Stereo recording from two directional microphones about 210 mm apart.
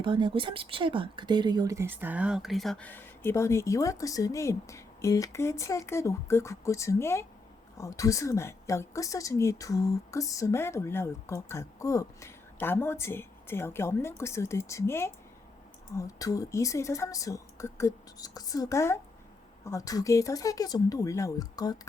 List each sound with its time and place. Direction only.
0.0 s a woman's voice: 25° right (ahead or behind); by 21.8 s 15° left (ahead or behind)